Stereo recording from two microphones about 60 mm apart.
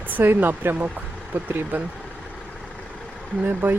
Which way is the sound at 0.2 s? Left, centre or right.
Right.